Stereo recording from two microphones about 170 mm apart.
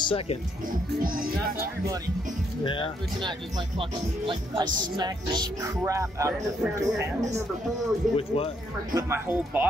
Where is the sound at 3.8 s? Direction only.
30° right (ahead or behind).